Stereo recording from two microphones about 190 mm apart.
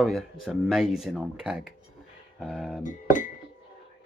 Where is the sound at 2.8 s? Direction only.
45° left (ahead or behind).